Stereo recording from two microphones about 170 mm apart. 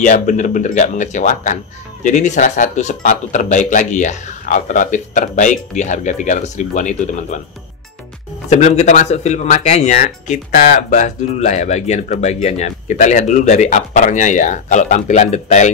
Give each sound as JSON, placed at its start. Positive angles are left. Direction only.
{"t": 0.0, "sound": "speech", "side_deg": 45}
{"t": 8.5, "sound": "speech", "side_deg": 45}